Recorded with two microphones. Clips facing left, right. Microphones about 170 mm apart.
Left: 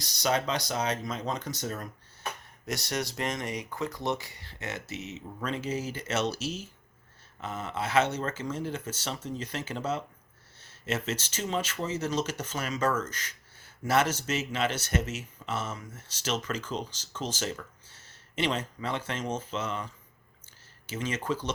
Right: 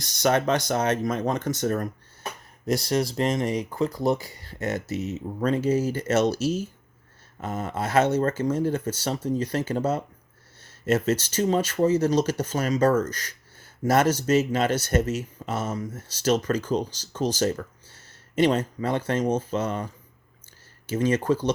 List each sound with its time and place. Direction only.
0.0 s speech: 50° right (ahead or behind)
2.6 s speech: 30° right (ahead or behind)
20.9 s speech: 40° right (ahead or behind)